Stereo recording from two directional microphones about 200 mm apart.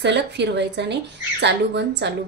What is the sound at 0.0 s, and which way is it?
A woman's voice, 60° right (ahead or behind).